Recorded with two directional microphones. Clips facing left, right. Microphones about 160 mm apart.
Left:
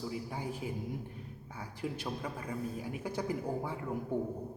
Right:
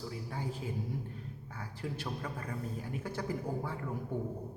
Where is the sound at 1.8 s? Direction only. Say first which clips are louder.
Left 2 dB; 15° left (ahead or behind).